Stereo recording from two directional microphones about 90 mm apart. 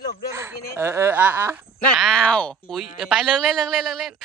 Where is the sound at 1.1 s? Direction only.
20° right (ahead or behind).